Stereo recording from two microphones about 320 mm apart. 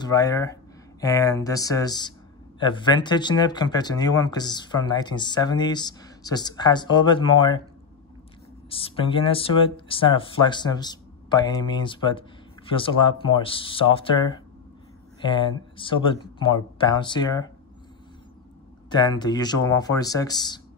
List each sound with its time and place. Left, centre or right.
0.0 s speech: centre
8.6 s speech: centre
18.9 s speech: centre